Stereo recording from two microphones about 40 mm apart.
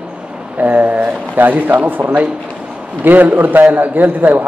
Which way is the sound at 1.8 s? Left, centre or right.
Right.